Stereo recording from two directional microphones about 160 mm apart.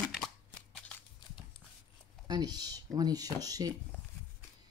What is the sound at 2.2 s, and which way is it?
Speech, 25° right (ahead or behind).